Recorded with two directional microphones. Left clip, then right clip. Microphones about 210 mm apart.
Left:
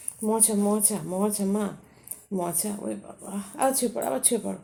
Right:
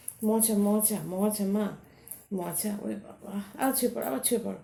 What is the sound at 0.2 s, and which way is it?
A woman's voice, 40° left (ahead or behind).